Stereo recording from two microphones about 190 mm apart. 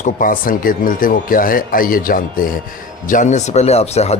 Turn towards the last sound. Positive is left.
turn(degrees=35)  # may be behind; listen again after turning